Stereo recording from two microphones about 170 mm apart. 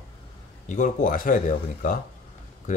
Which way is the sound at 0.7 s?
50° left (ahead or behind).